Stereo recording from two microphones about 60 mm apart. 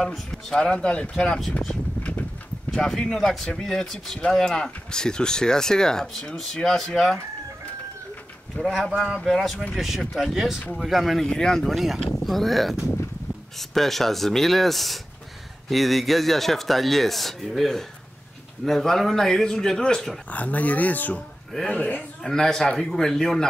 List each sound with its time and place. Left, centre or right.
0.1 s speech: centre
2.7 s speech: centre
8.7 s a man's voice: centre
11.2 s a man's voice: centre
20.2 s speech: left
22.2 s speech: centre